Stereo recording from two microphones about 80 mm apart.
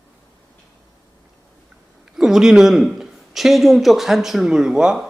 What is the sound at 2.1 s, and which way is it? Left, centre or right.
A man's voice, centre.